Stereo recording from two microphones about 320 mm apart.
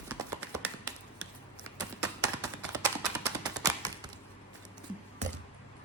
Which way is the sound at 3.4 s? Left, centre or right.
Centre.